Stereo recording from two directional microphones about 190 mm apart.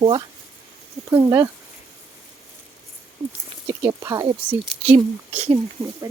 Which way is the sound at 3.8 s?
15° right (ahead or behind).